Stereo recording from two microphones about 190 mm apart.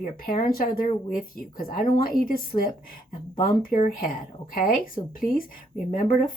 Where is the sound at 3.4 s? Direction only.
45° left (ahead or behind).